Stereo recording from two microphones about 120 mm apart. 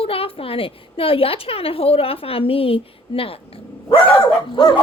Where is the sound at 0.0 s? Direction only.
50° left (ahead or behind).